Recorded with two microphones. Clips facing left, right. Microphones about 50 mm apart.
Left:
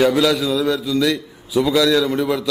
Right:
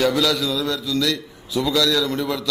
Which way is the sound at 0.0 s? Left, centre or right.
Centre.